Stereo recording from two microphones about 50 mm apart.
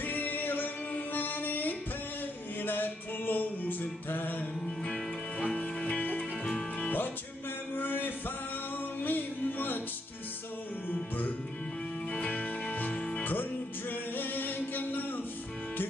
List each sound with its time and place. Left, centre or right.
0.0 s music: left
4.6 s music: centre
5.6 s music: left
6.4 s music: centre
7.7 s a sound: left
9.0 s music: left
12.1 s music: left
13.2 s music: left